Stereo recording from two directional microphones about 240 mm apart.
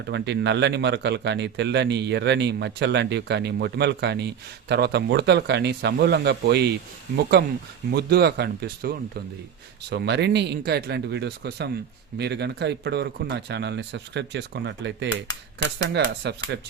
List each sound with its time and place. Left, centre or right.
0.1 s a man's voice: right